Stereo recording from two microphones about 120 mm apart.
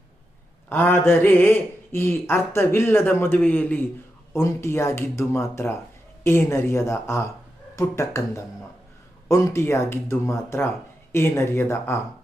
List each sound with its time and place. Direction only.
0.7 s speech: 20° left (ahead or behind)
9.3 s speech: 25° left (ahead or behind)